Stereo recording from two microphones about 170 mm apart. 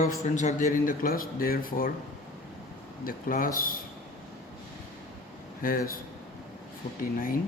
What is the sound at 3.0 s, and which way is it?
Speech, 55° left (ahead or behind).